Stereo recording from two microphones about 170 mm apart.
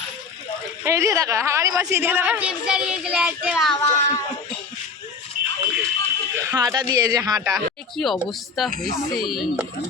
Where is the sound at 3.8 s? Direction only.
20° left (ahead or behind).